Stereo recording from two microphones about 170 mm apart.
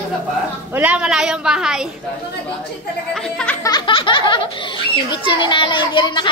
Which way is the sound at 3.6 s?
25° left (ahead or behind).